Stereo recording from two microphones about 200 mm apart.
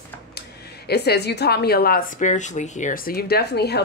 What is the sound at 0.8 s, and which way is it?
A woman's voice, 55° left (ahead or behind).